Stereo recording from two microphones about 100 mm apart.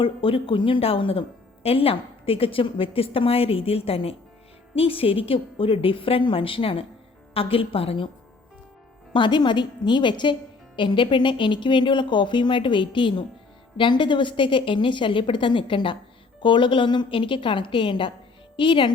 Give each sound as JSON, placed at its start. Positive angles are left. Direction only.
{"t": 0.0, "sound": "a woman's voice", "side_deg": 65}
{"t": 9.1, "sound": "a woman's voice", "side_deg": 55}